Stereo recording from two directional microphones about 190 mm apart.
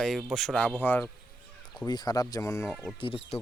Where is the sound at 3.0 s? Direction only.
25° left (ahead or behind).